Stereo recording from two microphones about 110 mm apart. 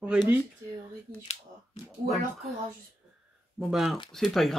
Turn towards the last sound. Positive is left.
turn(degrees=0)  # may be behind; listen again after turning